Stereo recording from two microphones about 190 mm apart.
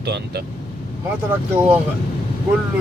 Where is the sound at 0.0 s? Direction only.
60° right (ahead or behind).